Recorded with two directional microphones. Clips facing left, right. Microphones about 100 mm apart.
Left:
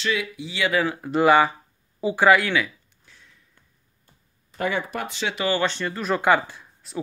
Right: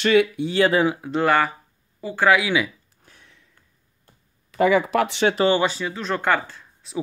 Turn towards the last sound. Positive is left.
turn(degrees=0)  # may be behind; listen again after turning